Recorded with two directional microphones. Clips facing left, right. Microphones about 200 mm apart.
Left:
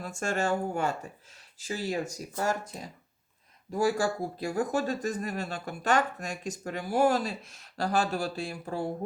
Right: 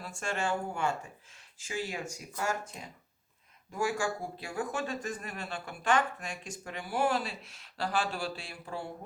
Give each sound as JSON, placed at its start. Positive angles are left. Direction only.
{"t": 0.0, "sound": "speech", "side_deg": 45}